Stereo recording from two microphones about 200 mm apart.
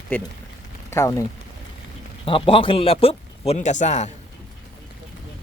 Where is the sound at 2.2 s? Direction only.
25° left (ahead or behind).